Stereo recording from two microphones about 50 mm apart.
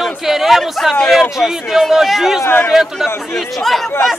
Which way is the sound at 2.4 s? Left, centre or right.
Left.